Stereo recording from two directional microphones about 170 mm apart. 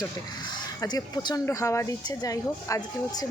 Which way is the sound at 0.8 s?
20° left (ahead or behind).